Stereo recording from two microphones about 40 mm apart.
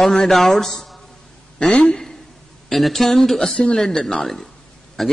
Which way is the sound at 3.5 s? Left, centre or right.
Left.